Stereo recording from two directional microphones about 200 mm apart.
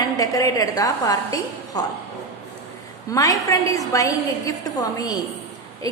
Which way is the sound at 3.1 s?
15° left (ahead or behind).